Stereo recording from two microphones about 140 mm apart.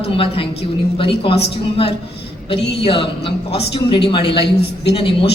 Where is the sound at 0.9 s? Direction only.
40° left (ahead or behind).